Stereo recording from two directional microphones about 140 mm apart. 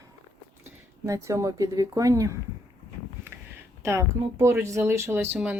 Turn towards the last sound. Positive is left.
turn(degrees=-10)  # may be behind; listen again after turning